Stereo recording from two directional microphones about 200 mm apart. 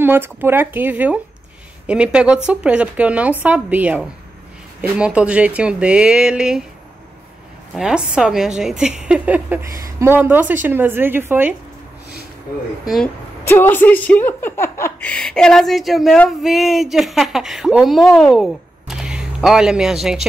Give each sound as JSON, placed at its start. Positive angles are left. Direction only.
{"t": 0.0, "sound": "a woman's voice", "side_deg": -10}
{"t": 7.7, "sound": "a woman's voice", "side_deg": -5}
{"t": 12.8, "sound": "speech", "side_deg": 0}